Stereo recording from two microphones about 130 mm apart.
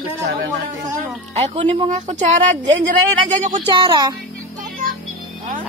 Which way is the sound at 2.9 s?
75° right (ahead or behind).